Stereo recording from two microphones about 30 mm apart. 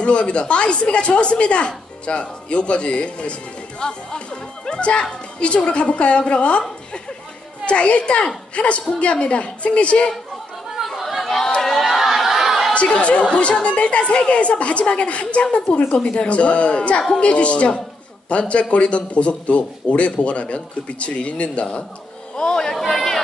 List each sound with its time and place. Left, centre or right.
0.0 s a woman's voice: left
7.6 s a woman's voice: left
11.0 s chatter: centre
11.2 s chatter: centre
11.8 s a sound: centre
12.7 s a man's voice: left
22.3 s a sound: centre